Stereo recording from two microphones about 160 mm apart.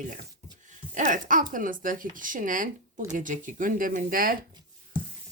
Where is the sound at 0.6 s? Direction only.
55° right (ahead or behind).